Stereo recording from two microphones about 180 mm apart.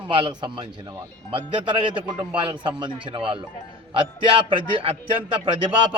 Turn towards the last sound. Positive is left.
turn(degrees=-30)  # may be behind; listen again after turning